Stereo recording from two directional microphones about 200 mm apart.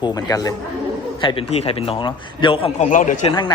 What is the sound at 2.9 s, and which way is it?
Speech, 40° left (ahead or behind).